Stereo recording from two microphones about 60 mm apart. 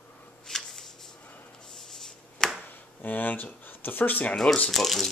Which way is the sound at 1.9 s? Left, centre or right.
Centre.